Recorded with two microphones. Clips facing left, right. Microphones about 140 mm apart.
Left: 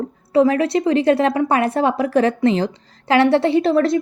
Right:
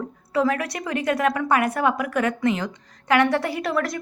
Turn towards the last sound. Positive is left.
turn(degrees=25)  # may be behind; listen again after turning